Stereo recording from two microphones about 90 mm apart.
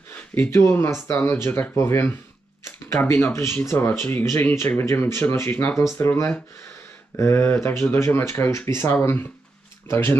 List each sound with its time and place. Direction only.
0.3 s speech: 30° left (ahead or behind)